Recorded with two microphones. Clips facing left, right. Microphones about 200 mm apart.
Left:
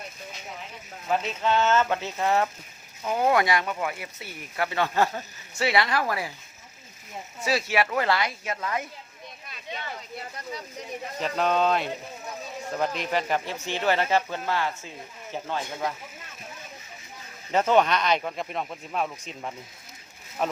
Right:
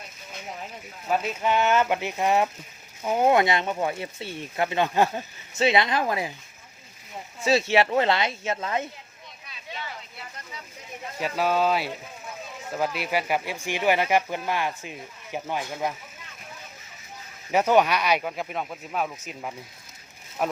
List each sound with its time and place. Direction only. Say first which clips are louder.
1.2 s speech: even; 10° right (ahead or behind)
7.4 s speech: right 4 dB; 25° right (ahead or behind)
11.2 s speech: even; 5° right (ahead or behind)
17.5 s speech: right 1 dB; 10° right (ahead or behind)